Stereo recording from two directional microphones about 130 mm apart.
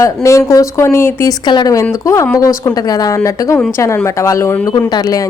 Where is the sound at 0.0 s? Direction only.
25° left (ahead or behind).